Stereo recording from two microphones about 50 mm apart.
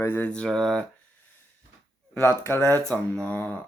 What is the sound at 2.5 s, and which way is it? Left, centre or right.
Speech, left.